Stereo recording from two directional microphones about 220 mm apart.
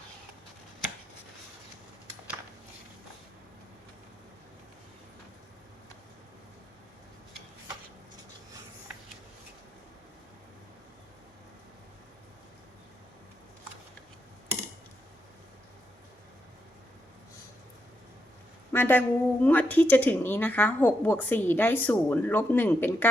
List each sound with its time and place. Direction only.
18.7 s speech: 10° left (ahead or behind)